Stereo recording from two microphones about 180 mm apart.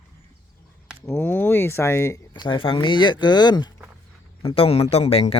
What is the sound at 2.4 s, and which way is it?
Speech, 30° left (ahead or behind).